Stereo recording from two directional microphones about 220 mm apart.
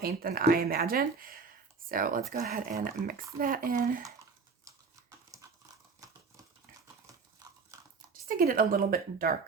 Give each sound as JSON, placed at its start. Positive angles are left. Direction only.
{"t": 0.0, "sound": "speech", "side_deg": -45}
{"t": 6.0, "sound": "a sound", "side_deg": -15}
{"t": 8.3, "sound": "speech", "side_deg": -40}